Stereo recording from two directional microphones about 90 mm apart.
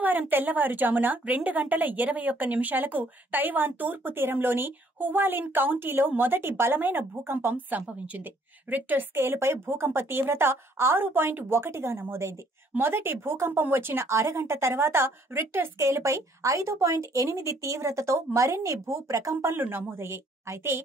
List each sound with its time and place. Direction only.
0.0 s a woman's voice: 20° right (ahead or behind)
19.4 s a woman's voice: 25° right (ahead or behind)